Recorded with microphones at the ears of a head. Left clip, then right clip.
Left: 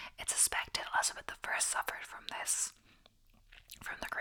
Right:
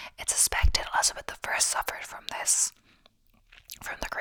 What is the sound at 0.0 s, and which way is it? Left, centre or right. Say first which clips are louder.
Whispering: right 7 dB; right.